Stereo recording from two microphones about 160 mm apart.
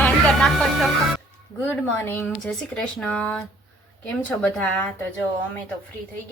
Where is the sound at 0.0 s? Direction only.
5° left (ahead or behind).